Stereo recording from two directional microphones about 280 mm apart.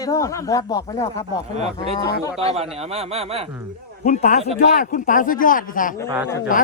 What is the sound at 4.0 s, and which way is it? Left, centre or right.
Speech, left.